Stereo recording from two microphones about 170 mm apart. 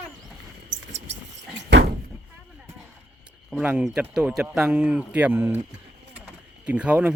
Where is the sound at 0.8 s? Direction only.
90° right.